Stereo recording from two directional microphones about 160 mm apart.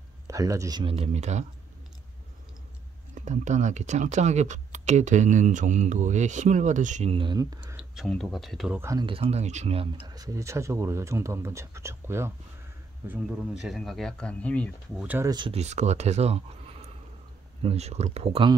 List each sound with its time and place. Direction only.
0.3 s speech: 20° right (ahead or behind)
0.9 s speech: 40° right (ahead or behind)
3.2 s speech: 50° right (ahead or behind)
7.1 s speech: 30° right (ahead or behind)
7.6 s speech: 5° right (ahead or behind)
8.7 s speech: 20° right (ahead or behind)
9.0 s speech: 35° right (ahead or behind); by 12.3 s 15° right (ahead or behind)
13.1 s speech: 5° right (ahead or behind)
15.0 s speech: 10° right (ahead or behind)
15.2 s speech: 30° right (ahead or behind)
15.6 s speech: 45° right (ahead or behind)